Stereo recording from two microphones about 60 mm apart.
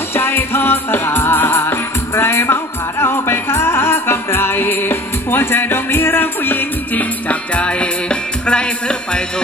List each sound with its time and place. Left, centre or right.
0.1 s music: left; by 9.2 s centre